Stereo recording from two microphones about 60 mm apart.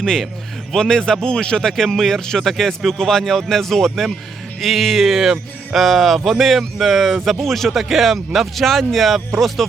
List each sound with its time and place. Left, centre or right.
0.0 s a man's voice: centre